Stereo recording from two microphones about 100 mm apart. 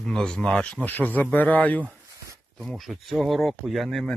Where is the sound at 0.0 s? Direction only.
5° left (ahead or behind).